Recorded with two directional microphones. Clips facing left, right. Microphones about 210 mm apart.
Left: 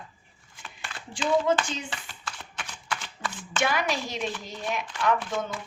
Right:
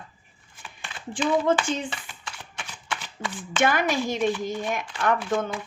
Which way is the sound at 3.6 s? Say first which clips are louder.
Right 5 dB; 50° right (ahead or behind).